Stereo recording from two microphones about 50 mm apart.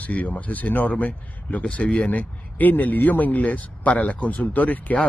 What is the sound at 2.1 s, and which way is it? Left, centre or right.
Speech, left.